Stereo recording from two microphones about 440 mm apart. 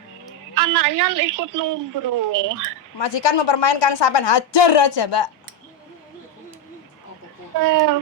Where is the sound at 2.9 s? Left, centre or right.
Left.